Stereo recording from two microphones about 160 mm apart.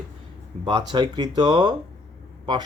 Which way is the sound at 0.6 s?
30° right (ahead or behind).